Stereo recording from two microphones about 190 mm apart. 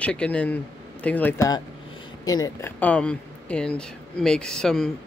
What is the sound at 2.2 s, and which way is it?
Speech, 20° left (ahead or behind).